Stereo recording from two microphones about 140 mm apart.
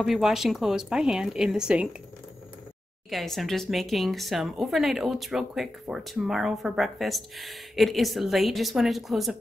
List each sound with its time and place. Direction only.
0.0 s speech: centre (ahead or behind)
3.1 s speech: centre (ahead or behind)